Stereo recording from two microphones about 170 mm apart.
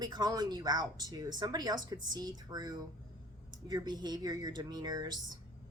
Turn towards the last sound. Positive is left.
turn(degrees=-25)  # may be behind; listen again after turning